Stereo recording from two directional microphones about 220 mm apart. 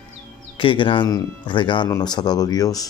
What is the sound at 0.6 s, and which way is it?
Speech, 20° left (ahead or behind).